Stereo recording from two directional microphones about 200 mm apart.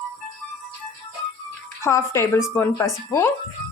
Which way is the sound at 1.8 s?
15° left (ahead or behind).